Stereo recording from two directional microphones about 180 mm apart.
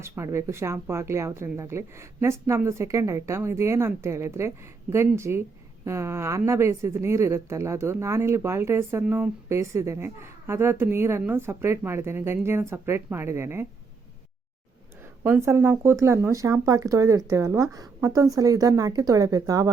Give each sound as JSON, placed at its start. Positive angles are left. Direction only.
{"t": 0.0, "sound": "speech", "side_deg": -15}
{"t": 15.2, "sound": "speech", "side_deg": -15}